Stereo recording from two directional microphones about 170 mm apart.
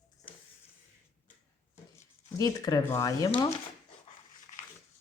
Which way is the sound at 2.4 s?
20° left (ahead or behind).